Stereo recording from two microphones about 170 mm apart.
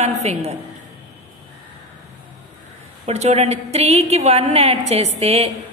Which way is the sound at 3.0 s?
40° right (ahead or behind).